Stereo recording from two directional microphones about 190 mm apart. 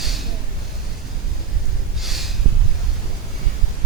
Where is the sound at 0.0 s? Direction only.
Centre (ahead or behind).